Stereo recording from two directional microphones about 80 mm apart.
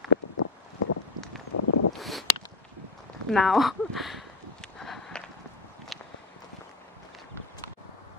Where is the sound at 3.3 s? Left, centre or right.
Centre.